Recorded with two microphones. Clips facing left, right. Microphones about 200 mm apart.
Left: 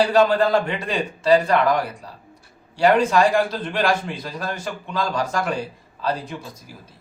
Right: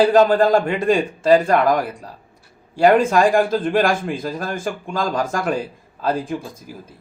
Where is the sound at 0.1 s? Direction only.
50° right (ahead or behind).